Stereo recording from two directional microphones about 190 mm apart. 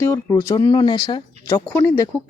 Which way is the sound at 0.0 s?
10° left (ahead or behind).